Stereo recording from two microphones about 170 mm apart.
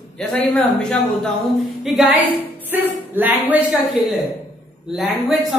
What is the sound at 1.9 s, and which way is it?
A woman's voice, 10° right (ahead or behind).